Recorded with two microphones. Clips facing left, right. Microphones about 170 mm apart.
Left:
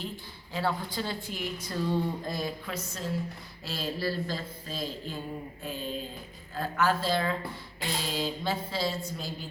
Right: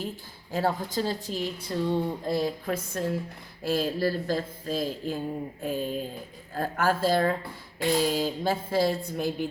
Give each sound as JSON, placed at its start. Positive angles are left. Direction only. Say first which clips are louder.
{"t": 0.5, "sound": "a woman's voice", "louder": "right 4 dB", "side_deg": -45}
{"t": 2.6, "sound": "speech", "louder": "right 6 dB", "side_deg": -55}